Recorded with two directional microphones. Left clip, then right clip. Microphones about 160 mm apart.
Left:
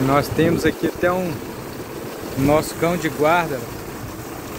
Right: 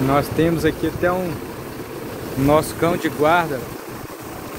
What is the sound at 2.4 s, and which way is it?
Speech, 15° right (ahead or behind).